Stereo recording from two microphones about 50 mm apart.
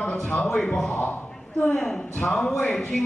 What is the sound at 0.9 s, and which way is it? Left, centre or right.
Speech, left.